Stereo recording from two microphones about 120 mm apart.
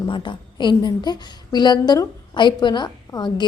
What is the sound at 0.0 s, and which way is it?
A woman's voice, 40° left (ahead or behind).